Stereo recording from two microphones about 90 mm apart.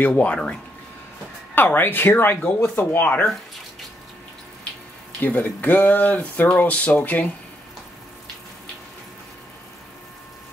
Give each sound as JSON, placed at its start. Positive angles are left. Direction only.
{"t": 0.0, "sound": "speech", "side_deg": 15}
{"t": 5.2, "sound": "speech", "side_deg": 20}